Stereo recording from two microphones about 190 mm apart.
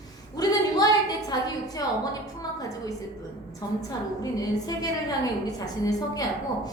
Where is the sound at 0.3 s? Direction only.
20° left (ahead or behind).